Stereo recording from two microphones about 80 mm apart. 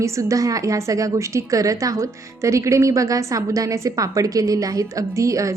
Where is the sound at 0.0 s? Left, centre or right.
Right.